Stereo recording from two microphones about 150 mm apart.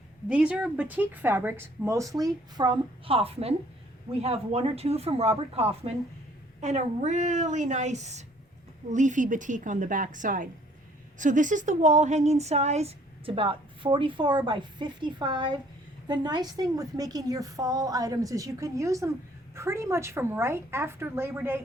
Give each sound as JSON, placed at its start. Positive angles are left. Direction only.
{"t": 0.3, "sound": "a woman's voice", "side_deg": -5}